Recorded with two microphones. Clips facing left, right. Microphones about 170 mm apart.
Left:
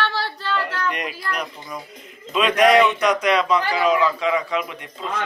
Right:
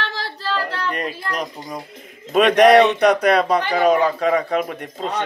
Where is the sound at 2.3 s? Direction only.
60° right (ahead or behind).